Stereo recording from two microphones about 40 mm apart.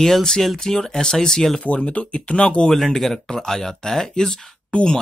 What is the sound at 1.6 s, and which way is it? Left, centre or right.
Speech, left.